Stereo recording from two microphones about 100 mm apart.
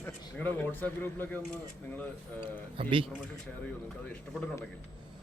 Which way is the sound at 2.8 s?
60° right (ahead or behind).